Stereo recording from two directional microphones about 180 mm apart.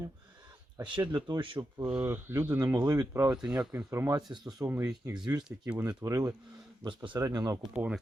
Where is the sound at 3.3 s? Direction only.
5° right (ahead or behind); by 7.7 s 20° right (ahead or behind).